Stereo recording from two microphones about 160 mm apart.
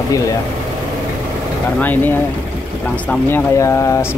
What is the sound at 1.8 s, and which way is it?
Speech, 10° left (ahead or behind).